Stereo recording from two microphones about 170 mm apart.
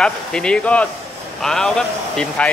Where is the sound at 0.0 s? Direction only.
5° left (ahead or behind).